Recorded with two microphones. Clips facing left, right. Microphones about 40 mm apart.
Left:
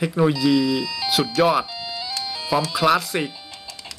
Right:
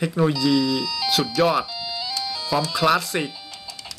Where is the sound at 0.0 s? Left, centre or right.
Centre.